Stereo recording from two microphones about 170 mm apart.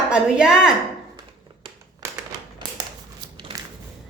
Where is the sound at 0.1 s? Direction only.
5° right (ahead or behind).